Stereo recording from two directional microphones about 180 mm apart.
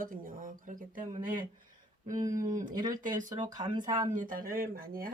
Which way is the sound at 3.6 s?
25° right (ahead or behind).